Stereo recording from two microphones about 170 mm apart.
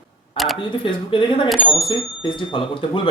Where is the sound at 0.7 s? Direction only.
30° left (ahead or behind).